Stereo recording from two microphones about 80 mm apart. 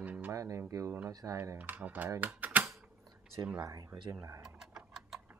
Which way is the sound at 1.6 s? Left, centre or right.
Right.